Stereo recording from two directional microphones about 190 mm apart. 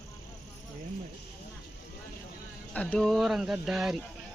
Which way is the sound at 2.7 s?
5° left (ahead or behind).